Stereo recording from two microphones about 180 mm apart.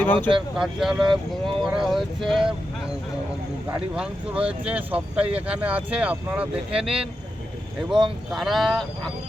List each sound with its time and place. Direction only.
0.2 s speech: 25° right (ahead or behind)
0.5 s speech: centre (ahead or behind)
1.6 s vehicle: centre (ahead or behind)
3.9 s speech: 5° right (ahead or behind)